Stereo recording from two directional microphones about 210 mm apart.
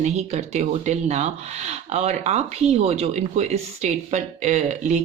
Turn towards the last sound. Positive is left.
turn(degrees=-35)  # may be behind; listen again after turning